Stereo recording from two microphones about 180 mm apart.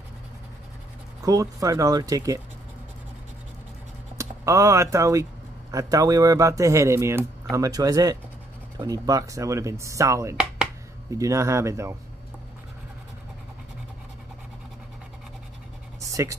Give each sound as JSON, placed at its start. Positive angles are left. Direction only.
{"t": 1.2, "sound": "speech", "side_deg": -20}
{"t": 4.2, "sound": "speech", "side_deg": -20}
{"t": 16.1, "sound": "speech", "side_deg": -15}